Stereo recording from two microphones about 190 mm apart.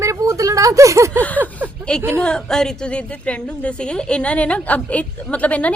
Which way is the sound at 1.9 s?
5° left (ahead or behind).